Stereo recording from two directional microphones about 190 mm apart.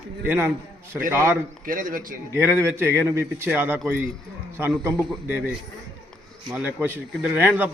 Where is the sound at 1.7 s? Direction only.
45° right (ahead or behind).